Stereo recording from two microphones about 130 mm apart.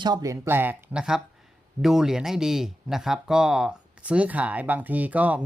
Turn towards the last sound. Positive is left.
turn(degrees=-10)  # may be behind; listen again after turning